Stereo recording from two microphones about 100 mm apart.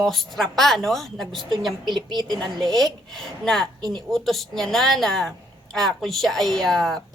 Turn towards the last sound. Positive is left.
turn(degrees=5)  # may be behind; listen again after turning